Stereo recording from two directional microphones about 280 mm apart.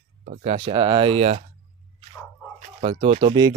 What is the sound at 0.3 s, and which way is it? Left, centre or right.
Speech, right.